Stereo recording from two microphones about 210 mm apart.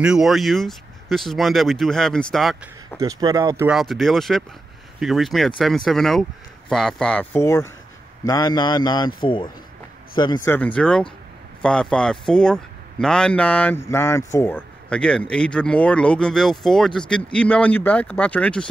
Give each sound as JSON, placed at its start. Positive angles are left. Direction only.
{"t": 0.0, "sound": "speech", "side_deg": -5}
{"t": 3.0, "sound": "speech", "side_deg": -15}
{"t": 3.7, "sound": "a man's voice", "side_deg": 0}